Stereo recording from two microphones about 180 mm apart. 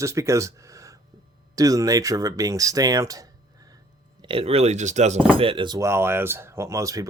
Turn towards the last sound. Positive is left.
turn(degrees=-20)  # may be behind; listen again after turning